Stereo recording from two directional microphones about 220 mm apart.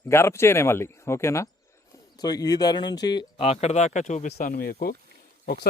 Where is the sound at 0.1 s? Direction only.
10° left (ahead or behind).